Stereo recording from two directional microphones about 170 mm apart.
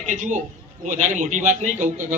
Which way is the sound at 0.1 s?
50° right (ahead or behind).